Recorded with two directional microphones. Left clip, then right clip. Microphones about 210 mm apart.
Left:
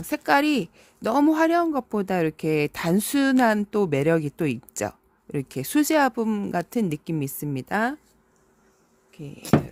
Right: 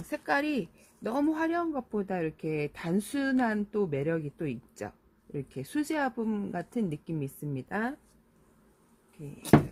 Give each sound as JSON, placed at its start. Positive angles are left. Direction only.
{"t": 0.1, "sound": "speech", "side_deg": 50}